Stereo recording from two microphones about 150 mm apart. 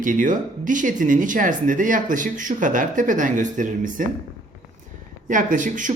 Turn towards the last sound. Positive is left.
turn(degrees=-60)  # may be behind; listen again after turning